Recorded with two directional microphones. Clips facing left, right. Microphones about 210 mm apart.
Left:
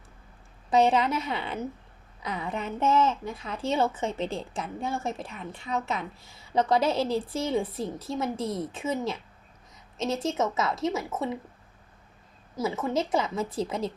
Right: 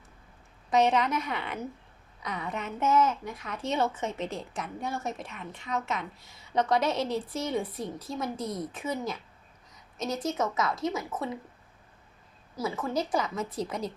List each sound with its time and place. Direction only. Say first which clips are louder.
0.7 s a woman's voice: left 2 dB; 30° left (ahead or behind)
12.5 s a woman's voice: left 3 dB; 20° left (ahead or behind)